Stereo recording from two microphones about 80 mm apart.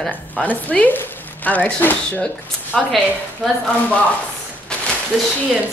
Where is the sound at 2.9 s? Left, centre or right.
Centre.